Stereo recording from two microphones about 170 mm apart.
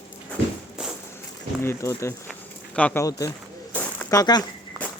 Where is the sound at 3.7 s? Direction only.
10° left (ahead or behind).